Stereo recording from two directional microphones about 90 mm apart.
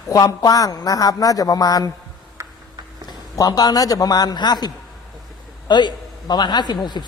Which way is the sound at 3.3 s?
45° left (ahead or behind).